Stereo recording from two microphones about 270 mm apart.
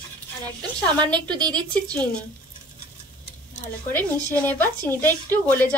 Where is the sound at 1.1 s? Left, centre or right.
Centre.